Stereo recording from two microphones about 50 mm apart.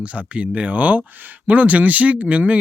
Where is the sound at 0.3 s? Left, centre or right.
Right.